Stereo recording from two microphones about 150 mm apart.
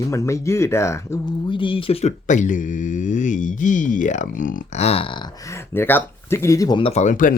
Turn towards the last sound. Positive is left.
turn(degrees=60)  # may be behind; listen again after turning